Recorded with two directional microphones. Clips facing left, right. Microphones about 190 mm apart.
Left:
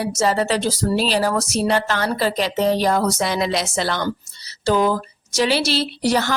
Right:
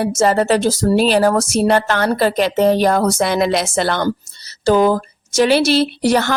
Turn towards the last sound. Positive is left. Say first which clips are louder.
# right 4 dB
turn(degrees=-55)  # may be behind; listen again after turning